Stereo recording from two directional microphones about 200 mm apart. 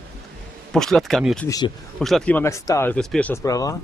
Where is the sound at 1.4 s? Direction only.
20° left (ahead or behind).